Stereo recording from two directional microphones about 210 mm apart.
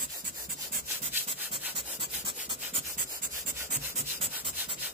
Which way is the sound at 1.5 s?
25° right (ahead or behind).